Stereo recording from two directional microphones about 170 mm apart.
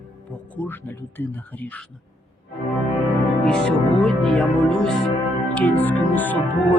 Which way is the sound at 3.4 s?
5° left (ahead or behind).